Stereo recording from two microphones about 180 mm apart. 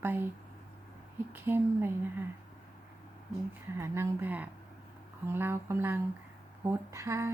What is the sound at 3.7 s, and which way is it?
A woman's voice, 15° right (ahead or behind).